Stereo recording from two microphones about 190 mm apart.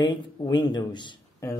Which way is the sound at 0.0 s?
25° left (ahead or behind).